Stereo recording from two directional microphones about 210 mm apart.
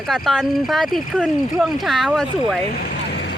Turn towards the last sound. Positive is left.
turn(degrees=55)  # may be behind; listen again after turning